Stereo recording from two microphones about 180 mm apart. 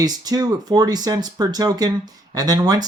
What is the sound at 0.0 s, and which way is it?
Speech, 20° right (ahead or behind).